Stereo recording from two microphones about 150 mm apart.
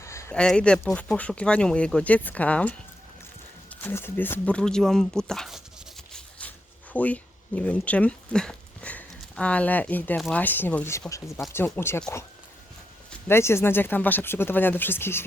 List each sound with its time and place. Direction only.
0.0 s a sound: 20° left (ahead or behind)
0.3 s speech: 5° left (ahead or behind)
6.4 s zipper: 10° left (ahead or behind)
6.9 s speech: 10° left (ahead or behind)